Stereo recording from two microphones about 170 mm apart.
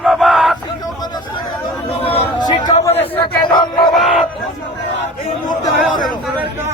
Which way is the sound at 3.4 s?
25° left (ahead or behind).